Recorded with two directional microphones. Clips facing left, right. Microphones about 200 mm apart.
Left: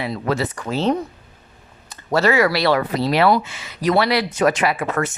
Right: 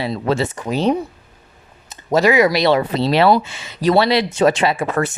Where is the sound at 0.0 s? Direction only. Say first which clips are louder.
Right 3 dB; 25° right (ahead or behind).